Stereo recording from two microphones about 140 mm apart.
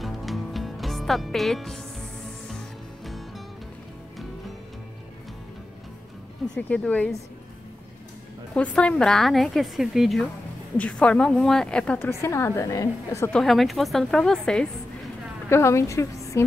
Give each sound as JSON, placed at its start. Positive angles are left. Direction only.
{"t": 0.0, "sound": "music", "side_deg": 0}
{"t": 6.4, "sound": "a woman's voice", "side_deg": 5}
{"t": 8.5, "sound": "a woman's voice", "side_deg": 5}
{"t": 12.1, "sound": "a woman's voice", "side_deg": 20}
{"t": 13.3, "sound": "a woman's voice", "side_deg": 0}
{"t": 15.5, "sound": "a woman's voice", "side_deg": 20}